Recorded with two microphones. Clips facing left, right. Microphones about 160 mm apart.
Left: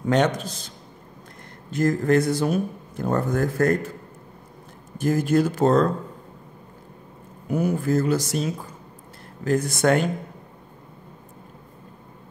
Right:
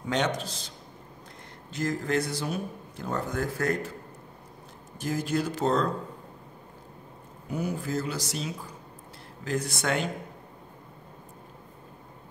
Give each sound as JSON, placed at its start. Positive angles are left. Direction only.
{"t": 0.0, "sound": "speech", "side_deg": 50}
{"t": 4.9, "sound": "speech", "side_deg": 50}
{"t": 7.5, "sound": "speech", "side_deg": 50}